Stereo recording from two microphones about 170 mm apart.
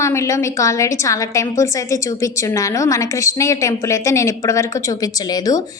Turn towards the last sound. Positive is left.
turn(degrees=20)  # may be behind; listen again after turning